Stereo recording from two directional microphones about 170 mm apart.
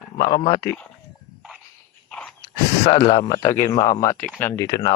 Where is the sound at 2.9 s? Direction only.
40° left (ahead or behind); by 4.6 s 10° left (ahead or behind).